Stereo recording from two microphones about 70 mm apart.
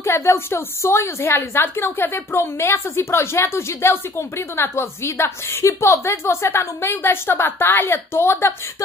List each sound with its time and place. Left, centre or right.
0.0 s a woman's voice: left